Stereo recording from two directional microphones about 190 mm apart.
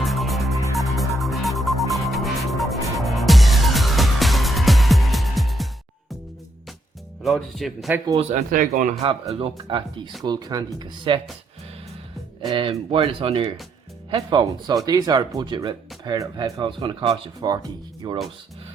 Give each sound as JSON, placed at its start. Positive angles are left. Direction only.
{"t": 0.0, "sound": "music", "side_deg": 0}
{"t": 7.2, "sound": "a man's voice", "side_deg": 0}
{"t": 8.1, "sound": "speech", "side_deg": -35}
{"t": 9.3, "sound": "speech", "side_deg": -25}
{"t": 12.5, "sound": "speech", "side_deg": -25}